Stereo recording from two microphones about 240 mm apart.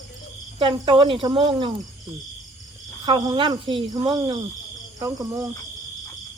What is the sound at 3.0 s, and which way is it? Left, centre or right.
Speech, centre.